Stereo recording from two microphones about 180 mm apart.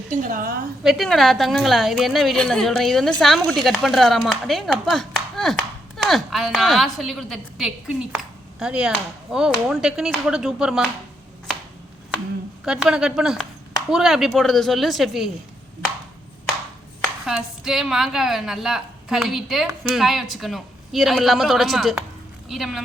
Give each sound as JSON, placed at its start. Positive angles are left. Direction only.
{"t": 0.1, "sound": "a woman's voice", "side_deg": -50}
{"t": 0.9, "sound": "a woman's voice", "side_deg": 0}
{"t": 12.6, "sound": "a woman's voice", "side_deg": -5}
{"t": 17.2, "sound": "a woman's voice", "side_deg": 0}